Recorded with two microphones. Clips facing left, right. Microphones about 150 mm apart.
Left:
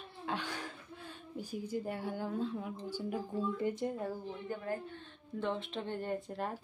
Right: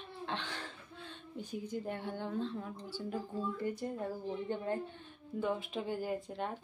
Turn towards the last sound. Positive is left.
turn(degrees=0)  # may be behind; listen again after turning